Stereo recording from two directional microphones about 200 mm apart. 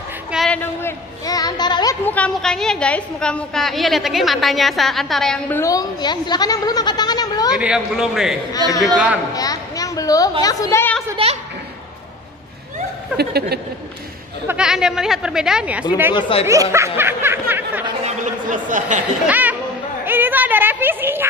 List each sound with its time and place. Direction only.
0.3 s a sound: centre (ahead or behind)
0.8 s speech: 20° left (ahead or behind)
2.0 s a woman's voice: 5° left (ahead or behind)
5.6 s speech: 20° left (ahead or behind)
7.5 s a woman's voice: 5° right (ahead or behind)
8.5 s a woman's voice: 20° left (ahead or behind)
8.8 s a woman's voice: 5° right (ahead or behind)
9.3 s a woman's voice: 20° left (ahead or behind)
13.2 s a sound: 55° right (ahead or behind)
14.5 s a woman's voice: 5° right (ahead or behind)
16.1 s speech: 25° left (ahead or behind)
16.7 s snicker: 10° right (ahead or behind)
18.0 s a sound: 40° right (ahead or behind)
19.2 s a woman's voice: 10° right (ahead or behind)